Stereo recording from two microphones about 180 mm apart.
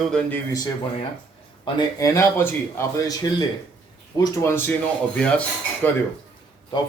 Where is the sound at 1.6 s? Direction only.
25° left (ahead or behind).